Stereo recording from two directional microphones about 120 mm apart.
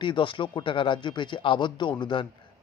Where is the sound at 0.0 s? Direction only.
40° left (ahead or behind).